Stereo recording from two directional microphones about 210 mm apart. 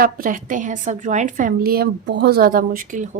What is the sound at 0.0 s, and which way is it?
A woman's voice, 40° right (ahead or behind).